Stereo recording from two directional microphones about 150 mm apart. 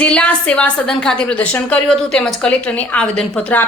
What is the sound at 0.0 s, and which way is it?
A woman's voice, 5° left (ahead or behind).